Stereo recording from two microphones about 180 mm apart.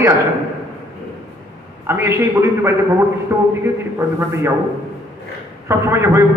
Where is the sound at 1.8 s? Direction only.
15° right (ahead or behind).